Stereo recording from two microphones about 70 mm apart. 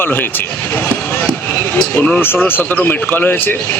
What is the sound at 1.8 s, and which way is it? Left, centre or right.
Speech, left.